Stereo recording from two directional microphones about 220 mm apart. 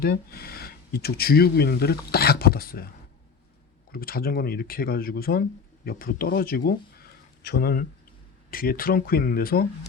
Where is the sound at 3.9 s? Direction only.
40° left (ahead or behind).